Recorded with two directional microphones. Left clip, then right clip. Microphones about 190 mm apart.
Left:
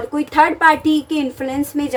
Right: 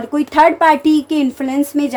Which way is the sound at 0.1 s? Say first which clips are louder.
Right 4 dB; 40° right (ahead or behind).